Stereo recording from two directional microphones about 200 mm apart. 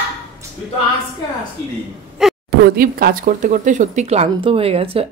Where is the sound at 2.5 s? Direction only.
50° right (ahead or behind).